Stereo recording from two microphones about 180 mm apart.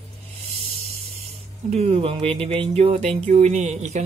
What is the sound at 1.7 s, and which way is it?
Speech, 35° right (ahead or behind).